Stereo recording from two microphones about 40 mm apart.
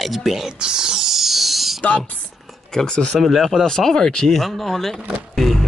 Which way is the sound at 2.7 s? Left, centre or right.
Centre.